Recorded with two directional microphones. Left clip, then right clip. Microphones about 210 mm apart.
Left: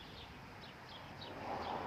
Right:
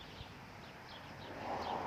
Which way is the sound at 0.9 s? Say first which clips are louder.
Right 1 dB; 40° right (ahead or behind).